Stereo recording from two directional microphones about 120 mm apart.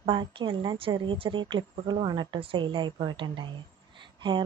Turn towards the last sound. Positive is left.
turn(degrees=-40)  # may be behind; listen again after turning